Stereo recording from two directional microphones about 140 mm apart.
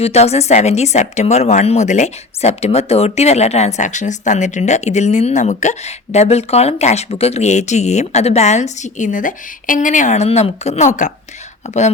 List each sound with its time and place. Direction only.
0.0 s a woman's voice: 50° left (ahead or behind)